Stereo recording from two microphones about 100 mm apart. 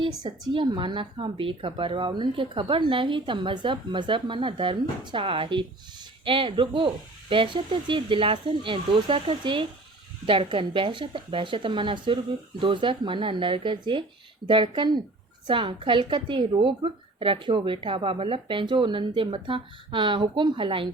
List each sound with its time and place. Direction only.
0.5 s a woman's voice: 55° right (ahead or behind)